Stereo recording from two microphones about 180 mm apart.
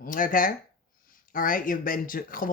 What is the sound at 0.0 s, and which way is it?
Speech, 50° left (ahead or behind).